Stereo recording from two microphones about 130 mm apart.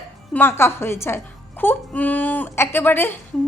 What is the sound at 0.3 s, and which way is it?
A woman's voice, 20° left (ahead or behind).